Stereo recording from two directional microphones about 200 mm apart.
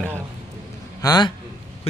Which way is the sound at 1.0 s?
20° left (ahead or behind).